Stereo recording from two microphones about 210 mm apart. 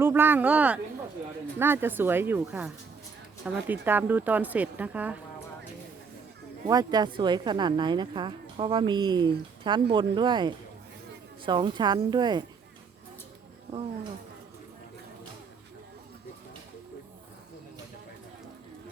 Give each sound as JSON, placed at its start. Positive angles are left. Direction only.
{"t": 0.0, "sound": "speech", "side_deg": -10}
{"t": 6.7, "sound": "a woman's voice", "side_deg": -20}